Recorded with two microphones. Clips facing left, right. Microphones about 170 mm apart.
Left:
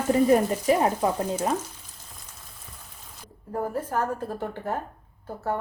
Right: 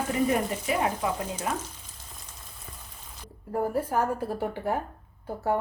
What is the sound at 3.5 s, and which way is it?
A woman's voice, 10° right (ahead or behind).